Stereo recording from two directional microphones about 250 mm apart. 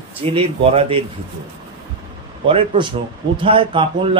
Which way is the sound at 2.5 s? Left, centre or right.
Right.